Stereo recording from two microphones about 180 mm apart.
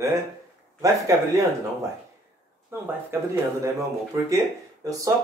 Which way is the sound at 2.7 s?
10° right (ahead or behind).